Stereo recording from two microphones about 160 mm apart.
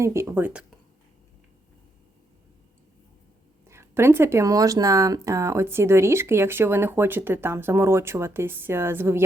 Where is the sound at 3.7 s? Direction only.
15° right (ahead or behind).